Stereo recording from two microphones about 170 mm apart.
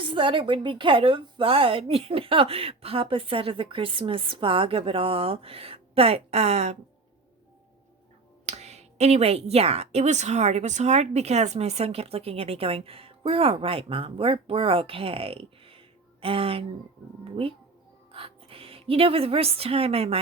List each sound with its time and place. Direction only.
0.0 s a woman's voice: 30° right (ahead or behind)
8.4 s a woman's voice: 40° right (ahead or behind)